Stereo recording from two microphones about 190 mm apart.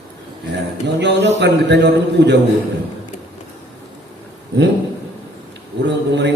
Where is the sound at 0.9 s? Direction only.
65° right (ahead or behind).